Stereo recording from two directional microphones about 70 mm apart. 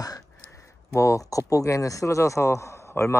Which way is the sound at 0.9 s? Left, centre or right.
Left.